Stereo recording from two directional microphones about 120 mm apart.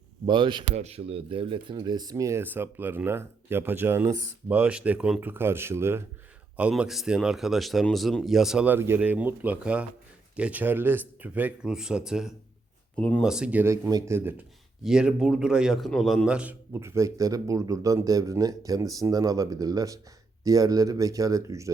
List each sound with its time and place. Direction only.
0.3 s speech: 40° right (ahead or behind)
0.7 s a man's voice: 60° right (ahead or behind); by 6.1 s 20° right (ahead or behind)
6.6 s speech: 10° right (ahead or behind)
13.0 s speech: 10° left (ahead or behind)
13.2 s speech: 5° right (ahead or behind)
13.9 s a man's voice: 25° right (ahead or behind)
14.8 s a man's voice: 5° right (ahead or behind); by 21.7 s 25° right (ahead or behind)